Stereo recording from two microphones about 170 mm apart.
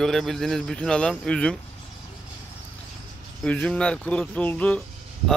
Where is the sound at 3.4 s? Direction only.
5° left (ahead or behind).